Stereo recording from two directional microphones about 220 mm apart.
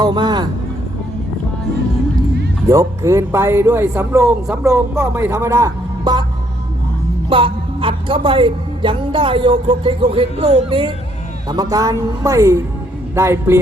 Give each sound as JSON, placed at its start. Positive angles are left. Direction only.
{"t": 0.0, "sound": "speech", "side_deg": -20}
{"t": 2.6, "sound": "speech", "side_deg": -15}
{"t": 7.3, "sound": "speech", "side_deg": -25}